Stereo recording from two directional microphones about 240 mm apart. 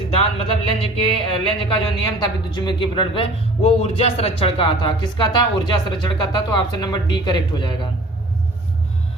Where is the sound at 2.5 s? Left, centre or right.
Centre.